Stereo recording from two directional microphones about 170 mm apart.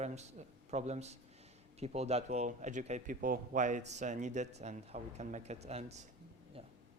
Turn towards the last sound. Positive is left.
turn(degrees=-40)  # may be behind; listen again after turning